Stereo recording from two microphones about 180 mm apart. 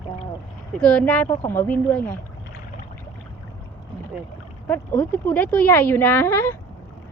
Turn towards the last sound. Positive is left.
turn(degrees=10)  # may be behind; listen again after turning